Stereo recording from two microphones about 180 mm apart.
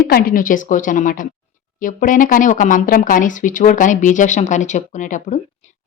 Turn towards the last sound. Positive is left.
turn(degrees=45)  # may be behind; listen again after turning